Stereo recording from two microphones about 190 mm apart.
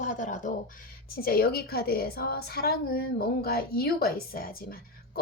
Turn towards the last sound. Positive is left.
turn(degrees=50)  # may be behind; listen again after turning